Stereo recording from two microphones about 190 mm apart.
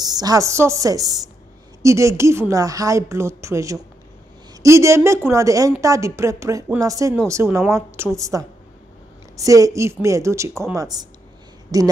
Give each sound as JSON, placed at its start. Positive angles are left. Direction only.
{"t": 0.0, "sound": "a woman's voice", "side_deg": -20}